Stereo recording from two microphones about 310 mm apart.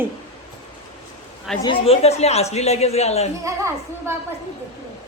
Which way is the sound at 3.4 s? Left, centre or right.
Centre.